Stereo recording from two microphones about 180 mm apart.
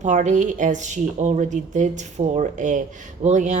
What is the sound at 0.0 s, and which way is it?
Speech, 40° right (ahead or behind).